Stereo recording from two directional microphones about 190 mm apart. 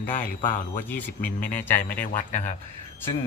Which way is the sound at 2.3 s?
45° left (ahead or behind).